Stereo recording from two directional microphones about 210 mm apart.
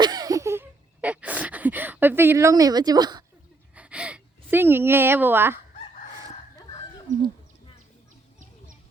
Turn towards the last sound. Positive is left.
turn(degrees=15)  # may be behind; listen again after turning